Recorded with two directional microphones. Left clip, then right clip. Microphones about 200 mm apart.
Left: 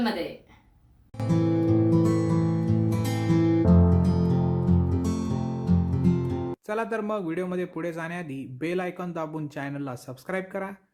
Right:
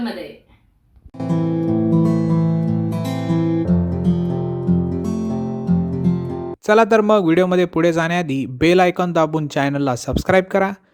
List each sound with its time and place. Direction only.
1.2 s music: centre (ahead or behind)
6.7 s speech: 45° right (ahead or behind)